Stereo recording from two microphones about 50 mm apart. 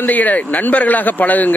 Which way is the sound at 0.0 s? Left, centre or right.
Left.